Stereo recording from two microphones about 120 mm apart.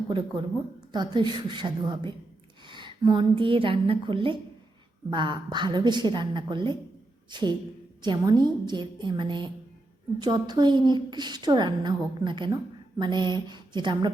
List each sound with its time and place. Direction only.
0.1 s a woman's voice: 40° right (ahead or behind)